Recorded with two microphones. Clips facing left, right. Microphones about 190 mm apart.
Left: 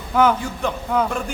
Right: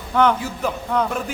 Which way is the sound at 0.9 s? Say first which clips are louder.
Left 1 dB; 5° left (ahead or behind).